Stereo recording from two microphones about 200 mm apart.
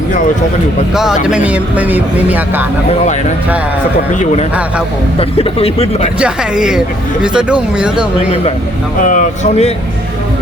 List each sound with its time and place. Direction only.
0.9 s speech: 5° right (ahead or behind)
3.0 s speech: 35° left (ahead or behind)
5.4 s speech: 30° left (ahead or behind)
6.1 s speech: 5° right (ahead or behind)
9.0 s speech: 40° left (ahead or behind)